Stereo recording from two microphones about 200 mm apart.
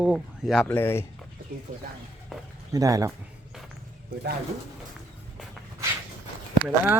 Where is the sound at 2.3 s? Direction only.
Centre (ahead or behind).